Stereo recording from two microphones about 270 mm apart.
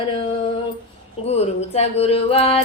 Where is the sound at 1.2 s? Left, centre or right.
Left.